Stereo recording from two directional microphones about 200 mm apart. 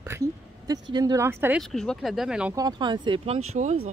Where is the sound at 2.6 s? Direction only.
20° right (ahead or behind).